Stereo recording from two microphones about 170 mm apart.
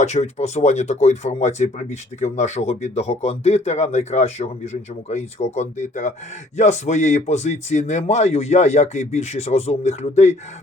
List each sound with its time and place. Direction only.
0.0 s speech: 40° left (ahead or behind)